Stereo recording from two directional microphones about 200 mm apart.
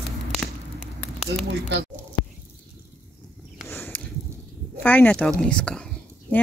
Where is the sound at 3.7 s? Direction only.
10° left (ahead or behind).